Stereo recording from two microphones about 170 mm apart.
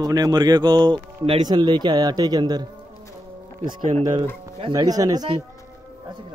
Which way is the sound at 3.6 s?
55° right (ahead or behind).